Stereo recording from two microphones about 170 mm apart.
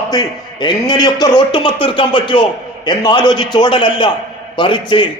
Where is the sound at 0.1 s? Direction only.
25° left (ahead or behind).